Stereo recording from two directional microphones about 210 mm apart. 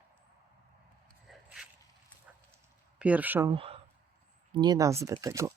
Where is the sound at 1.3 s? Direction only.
Centre (ahead or behind).